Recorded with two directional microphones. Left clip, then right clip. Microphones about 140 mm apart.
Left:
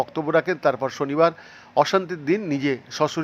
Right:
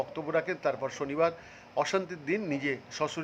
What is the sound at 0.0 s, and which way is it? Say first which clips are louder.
A man's voice: left 9 dB; 35° left (ahead or behind).